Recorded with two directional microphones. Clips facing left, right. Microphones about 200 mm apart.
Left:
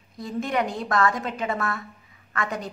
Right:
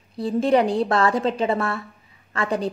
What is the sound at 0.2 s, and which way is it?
A woman's voice, 30° right (ahead or behind).